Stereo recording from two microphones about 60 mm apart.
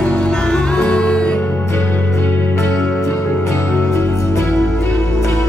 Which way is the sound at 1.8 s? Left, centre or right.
Left.